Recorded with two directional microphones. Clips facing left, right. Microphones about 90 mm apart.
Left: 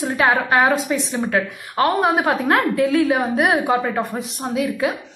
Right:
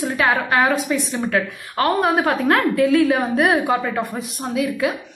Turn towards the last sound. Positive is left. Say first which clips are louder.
# even
turn(degrees=25)  # may be behind; listen again after turning